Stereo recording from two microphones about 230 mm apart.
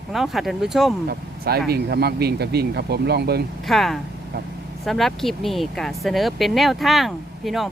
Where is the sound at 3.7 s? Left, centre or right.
Centre.